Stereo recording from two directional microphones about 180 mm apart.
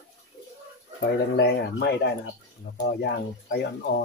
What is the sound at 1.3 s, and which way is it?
Speech, 70° left (ahead or behind).